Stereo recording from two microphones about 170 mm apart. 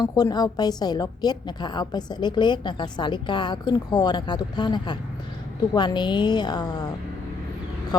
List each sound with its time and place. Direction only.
0.0 s a woman's voice: 20° left (ahead or behind)